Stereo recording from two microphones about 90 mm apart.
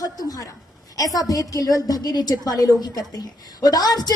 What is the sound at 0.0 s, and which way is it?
A woman's voice, 40° left (ahead or behind).